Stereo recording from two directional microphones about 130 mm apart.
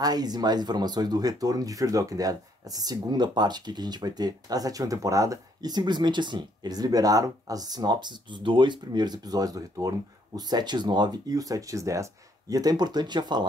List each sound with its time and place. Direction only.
0.0 s speech: 30° right (ahead or behind)